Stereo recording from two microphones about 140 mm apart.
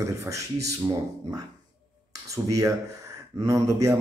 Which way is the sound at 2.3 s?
25° right (ahead or behind).